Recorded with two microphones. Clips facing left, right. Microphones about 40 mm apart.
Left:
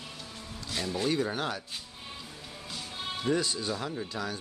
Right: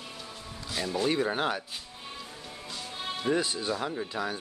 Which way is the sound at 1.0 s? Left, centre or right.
Right.